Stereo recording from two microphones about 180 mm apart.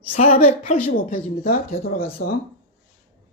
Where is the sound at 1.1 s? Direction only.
55° left (ahead or behind).